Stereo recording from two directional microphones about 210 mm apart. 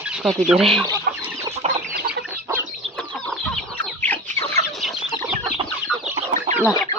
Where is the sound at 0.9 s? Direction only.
15° right (ahead or behind).